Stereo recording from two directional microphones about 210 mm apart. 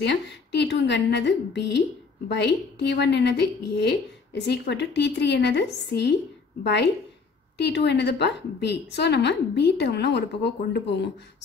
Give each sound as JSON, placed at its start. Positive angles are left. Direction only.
{"t": 0.0, "sound": "a woman's voice", "side_deg": 55}